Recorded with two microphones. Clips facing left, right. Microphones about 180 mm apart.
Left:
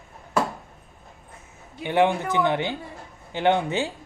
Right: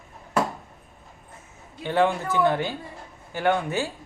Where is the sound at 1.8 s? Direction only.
20° left (ahead or behind).